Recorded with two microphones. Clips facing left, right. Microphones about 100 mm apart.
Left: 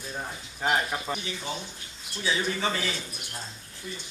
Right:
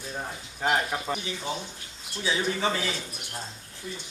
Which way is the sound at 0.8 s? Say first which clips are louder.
Right 1 dB; 15° right (ahead or behind).